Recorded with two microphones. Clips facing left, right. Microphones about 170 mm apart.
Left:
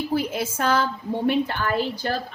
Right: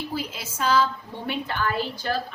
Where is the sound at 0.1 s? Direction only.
55° left (ahead or behind).